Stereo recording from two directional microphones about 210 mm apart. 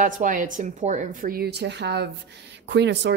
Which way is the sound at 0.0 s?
40° right (ahead or behind).